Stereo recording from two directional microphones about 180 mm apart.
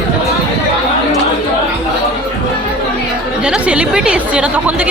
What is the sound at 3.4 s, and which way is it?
Speech, 5° right (ahead or behind).